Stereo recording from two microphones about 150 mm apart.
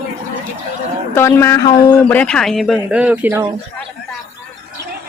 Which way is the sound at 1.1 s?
15° left (ahead or behind).